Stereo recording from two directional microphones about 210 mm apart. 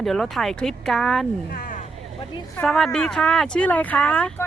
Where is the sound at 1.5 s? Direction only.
40° left (ahead or behind).